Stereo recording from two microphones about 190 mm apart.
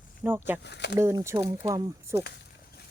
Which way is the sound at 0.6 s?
65° left (ahead or behind).